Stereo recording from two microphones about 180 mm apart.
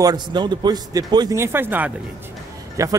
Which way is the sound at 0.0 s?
25° right (ahead or behind).